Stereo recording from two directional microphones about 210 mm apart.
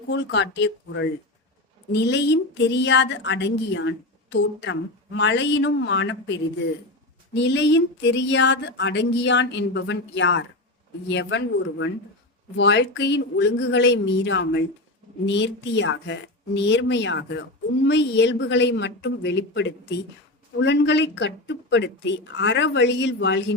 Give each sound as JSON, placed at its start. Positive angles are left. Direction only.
{"t": 0.1, "sound": "a woman's voice", "side_deg": 55}